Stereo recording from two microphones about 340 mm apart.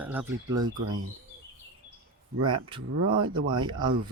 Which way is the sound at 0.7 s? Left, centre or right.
Right.